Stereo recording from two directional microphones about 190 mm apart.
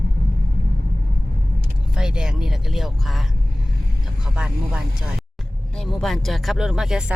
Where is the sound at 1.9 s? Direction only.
5° right (ahead or behind).